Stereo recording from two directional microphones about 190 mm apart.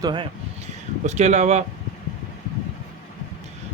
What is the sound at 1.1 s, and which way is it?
Speech, 35° right (ahead or behind).